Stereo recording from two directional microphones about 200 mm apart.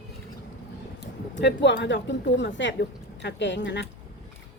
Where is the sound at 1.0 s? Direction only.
60° left (ahead or behind).